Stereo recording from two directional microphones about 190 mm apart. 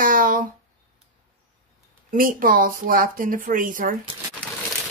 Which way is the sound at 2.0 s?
50° right (ahead or behind).